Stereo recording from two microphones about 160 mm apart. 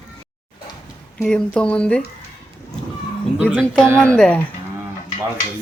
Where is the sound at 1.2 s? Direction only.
5° left (ahead or behind).